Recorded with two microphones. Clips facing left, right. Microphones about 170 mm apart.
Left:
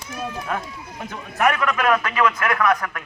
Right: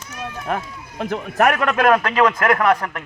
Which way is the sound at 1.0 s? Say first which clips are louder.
Right 7 dB; 70° right (ahead or behind).